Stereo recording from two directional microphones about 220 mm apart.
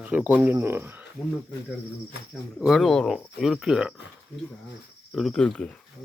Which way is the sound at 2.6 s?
Centre (ahead or behind).